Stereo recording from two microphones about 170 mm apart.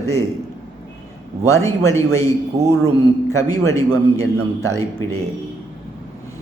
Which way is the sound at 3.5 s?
20° left (ahead or behind).